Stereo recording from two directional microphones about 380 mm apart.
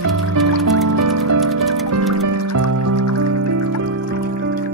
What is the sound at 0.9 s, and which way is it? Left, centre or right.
Music, right.